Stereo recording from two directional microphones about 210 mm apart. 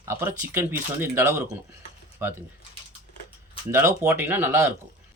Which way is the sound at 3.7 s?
10° right (ahead or behind).